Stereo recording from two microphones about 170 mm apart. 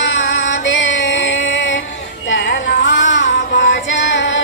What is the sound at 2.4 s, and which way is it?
Music, 75° left (ahead or behind).